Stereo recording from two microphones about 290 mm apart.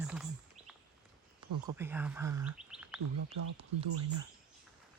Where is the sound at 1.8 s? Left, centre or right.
Centre.